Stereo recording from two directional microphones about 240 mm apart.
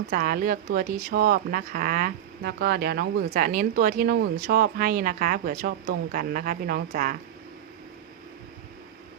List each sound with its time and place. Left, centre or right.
0.1 s speech: right